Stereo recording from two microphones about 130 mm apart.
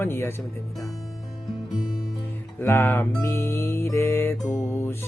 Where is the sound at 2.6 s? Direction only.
20° left (ahead or behind).